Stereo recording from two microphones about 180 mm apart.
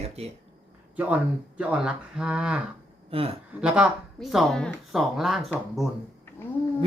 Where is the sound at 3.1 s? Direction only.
30° right (ahead or behind).